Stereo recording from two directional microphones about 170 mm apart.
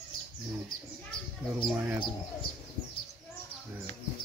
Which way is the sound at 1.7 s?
10° right (ahead or behind).